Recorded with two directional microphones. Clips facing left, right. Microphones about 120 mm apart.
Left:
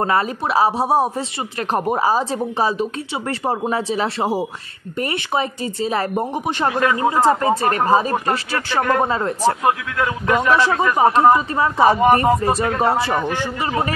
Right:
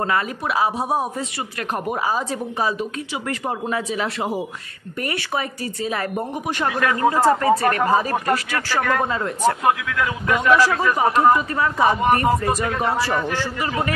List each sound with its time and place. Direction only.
0.0 s a woman's voice: 30° left (ahead or behind)